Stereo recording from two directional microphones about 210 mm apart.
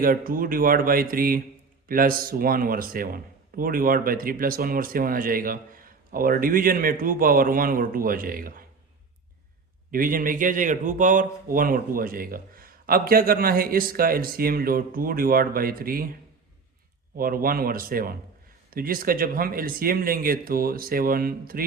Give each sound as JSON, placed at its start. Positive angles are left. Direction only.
{"t": 0.0, "sound": "speech", "side_deg": -45}
{"t": 9.9, "sound": "speech", "side_deg": -40}
{"t": 17.2, "sound": "speech", "side_deg": -45}